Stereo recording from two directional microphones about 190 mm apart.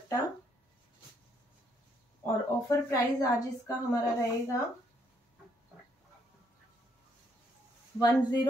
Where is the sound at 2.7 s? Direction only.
15° left (ahead or behind).